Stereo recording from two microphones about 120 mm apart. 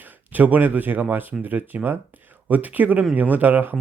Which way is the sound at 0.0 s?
15° right (ahead or behind).